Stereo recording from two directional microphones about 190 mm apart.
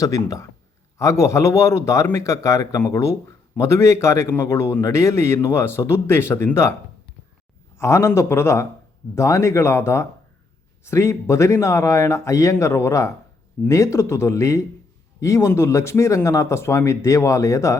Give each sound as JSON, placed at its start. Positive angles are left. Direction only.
{"t": 0.0, "sound": "a man's voice", "side_deg": 15}
{"t": 7.8, "sound": "a man's voice", "side_deg": 15}